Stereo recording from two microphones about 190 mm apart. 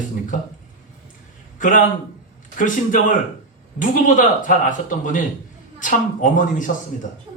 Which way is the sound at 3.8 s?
45° left (ahead or behind).